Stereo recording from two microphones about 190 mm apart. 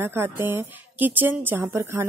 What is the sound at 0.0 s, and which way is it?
A woman's voice, 10° right (ahead or behind).